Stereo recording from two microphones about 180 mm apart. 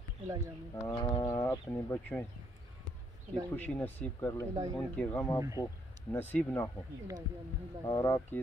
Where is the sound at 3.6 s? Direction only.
10° left (ahead or behind).